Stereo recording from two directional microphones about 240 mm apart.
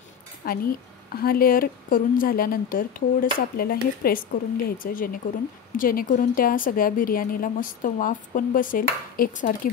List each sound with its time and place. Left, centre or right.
0.5 s a woman's voice: left